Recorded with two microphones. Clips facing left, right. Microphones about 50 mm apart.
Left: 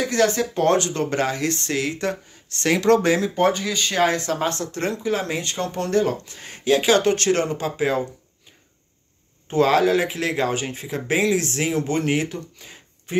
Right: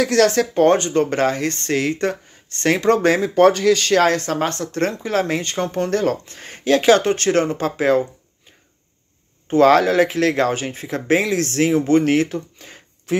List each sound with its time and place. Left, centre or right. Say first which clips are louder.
0.0 s speech: right 4 dB; right
0.6 s speech: right 5 dB; right
3.3 s speech: right 7 dB; right
4.2 s speech: right 2 dB; right
9.5 s speech: right 4 dB; right